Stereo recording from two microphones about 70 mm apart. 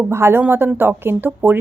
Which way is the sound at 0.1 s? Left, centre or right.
Right.